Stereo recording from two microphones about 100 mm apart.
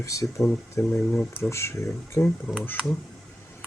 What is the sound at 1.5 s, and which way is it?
Speech, 30° left (ahead or behind).